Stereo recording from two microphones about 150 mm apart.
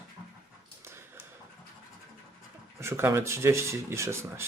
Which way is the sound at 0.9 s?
15° right (ahead or behind).